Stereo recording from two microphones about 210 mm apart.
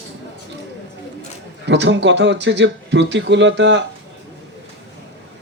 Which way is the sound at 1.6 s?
55° right (ahead or behind).